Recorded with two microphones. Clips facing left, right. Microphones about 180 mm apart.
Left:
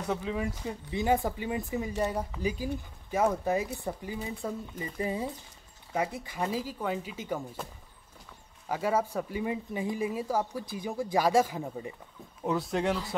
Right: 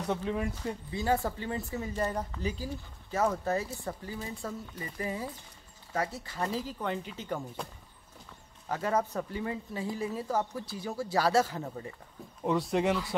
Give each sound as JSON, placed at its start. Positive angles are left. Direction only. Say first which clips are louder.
{"t": 0.1, "sound": "speech", "louder": "even", "side_deg": 0}
{"t": 0.9, "sound": "speech", "louder": "left 3 dB", "side_deg": 15}
{"t": 8.6, "sound": "speech", "louder": "left 1 dB", "side_deg": 10}
{"t": 12.4, "sound": "speech", "louder": "right 1 dB", "side_deg": 0}